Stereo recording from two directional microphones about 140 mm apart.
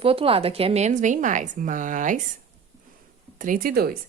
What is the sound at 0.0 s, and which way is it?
Speech, 40° right (ahead or behind).